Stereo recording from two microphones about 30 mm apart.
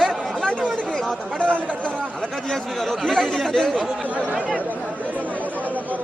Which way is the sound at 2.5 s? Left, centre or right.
Centre.